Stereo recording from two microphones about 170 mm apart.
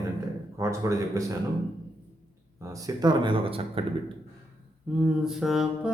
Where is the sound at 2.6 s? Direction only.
20° right (ahead or behind).